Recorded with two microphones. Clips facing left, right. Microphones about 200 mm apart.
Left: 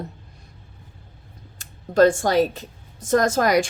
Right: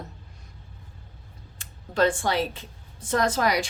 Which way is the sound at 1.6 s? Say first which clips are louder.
Left 7 dB; 40° left (ahead or behind).